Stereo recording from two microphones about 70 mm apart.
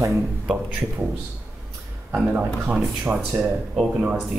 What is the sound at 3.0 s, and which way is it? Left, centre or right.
Speech, centre.